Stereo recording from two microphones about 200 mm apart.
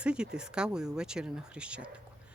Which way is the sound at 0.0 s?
5° right (ahead or behind).